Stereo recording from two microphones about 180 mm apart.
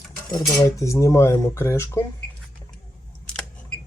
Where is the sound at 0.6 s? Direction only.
15° left (ahead or behind).